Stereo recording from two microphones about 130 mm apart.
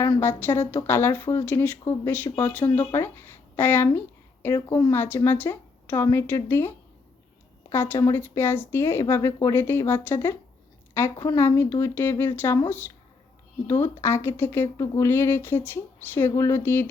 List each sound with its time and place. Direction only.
0.2 s speech: 15° left (ahead or behind)
13.7 s speech: 20° left (ahead or behind)